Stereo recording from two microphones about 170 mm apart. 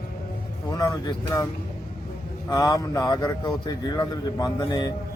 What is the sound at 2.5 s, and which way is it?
Speech, 20° left (ahead or behind).